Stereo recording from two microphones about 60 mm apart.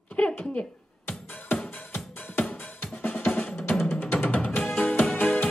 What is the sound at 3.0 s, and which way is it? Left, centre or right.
Drum, left.